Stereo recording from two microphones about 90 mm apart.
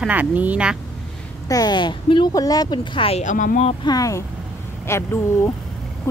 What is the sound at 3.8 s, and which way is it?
Speech, 40° left (ahead or behind).